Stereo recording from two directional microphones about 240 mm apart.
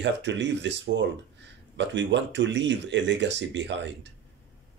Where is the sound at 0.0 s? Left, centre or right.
Right.